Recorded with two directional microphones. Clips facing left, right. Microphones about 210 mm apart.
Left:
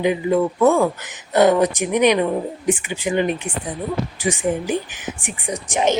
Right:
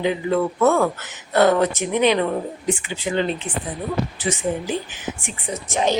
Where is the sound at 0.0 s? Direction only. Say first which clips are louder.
Left 2 dB; 15° left (ahead or behind).